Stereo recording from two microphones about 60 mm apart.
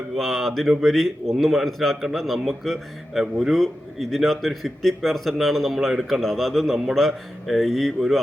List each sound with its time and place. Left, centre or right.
0.2 s a man's voice: centre